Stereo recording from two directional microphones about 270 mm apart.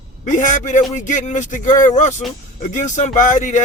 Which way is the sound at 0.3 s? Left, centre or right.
Left.